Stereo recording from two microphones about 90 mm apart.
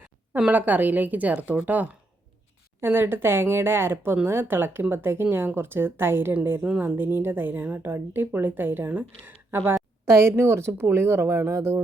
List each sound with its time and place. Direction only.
0.0 s speech: 15° right (ahead or behind)